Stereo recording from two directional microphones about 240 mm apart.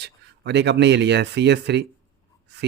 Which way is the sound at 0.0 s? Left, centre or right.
Right.